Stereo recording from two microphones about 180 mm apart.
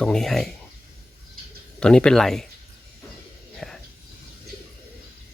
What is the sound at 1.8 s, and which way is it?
Speech, 5° left (ahead or behind).